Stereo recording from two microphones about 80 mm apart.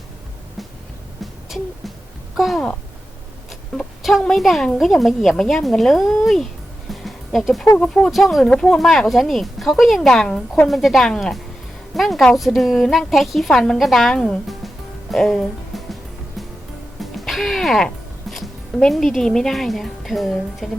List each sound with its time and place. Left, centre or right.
1.2 s a sound: centre
2.3 s speech: centre
3.8 s speech: centre
6.9 s music: centre
7.8 s speech: centre
15.1 s music: centre
17.0 s speech: centre